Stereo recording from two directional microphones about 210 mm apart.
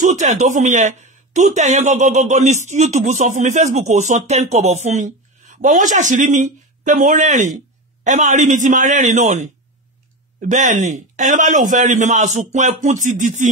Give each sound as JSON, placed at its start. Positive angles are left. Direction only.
{"t": 0.0, "sound": "speech", "side_deg": -35}